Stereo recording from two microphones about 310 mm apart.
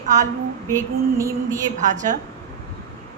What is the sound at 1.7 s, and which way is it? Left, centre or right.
Speech, right.